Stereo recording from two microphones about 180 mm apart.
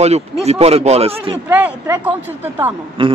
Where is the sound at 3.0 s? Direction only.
30° right (ahead or behind).